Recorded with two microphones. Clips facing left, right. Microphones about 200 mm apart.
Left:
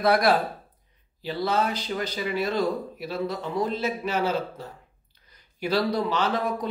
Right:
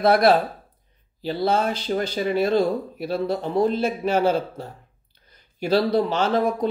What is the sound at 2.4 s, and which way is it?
Speech, 30° right (ahead or behind).